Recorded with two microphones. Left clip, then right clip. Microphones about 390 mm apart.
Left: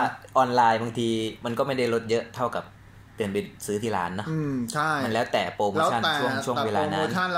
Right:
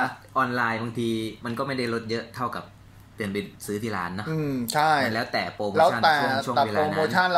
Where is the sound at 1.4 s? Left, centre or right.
Centre.